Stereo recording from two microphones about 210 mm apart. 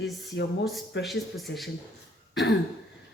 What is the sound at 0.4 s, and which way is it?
Speech, 60° left (ahead or behind).